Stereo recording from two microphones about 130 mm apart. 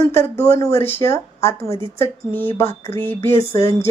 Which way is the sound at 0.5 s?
20° left (ahead or behind).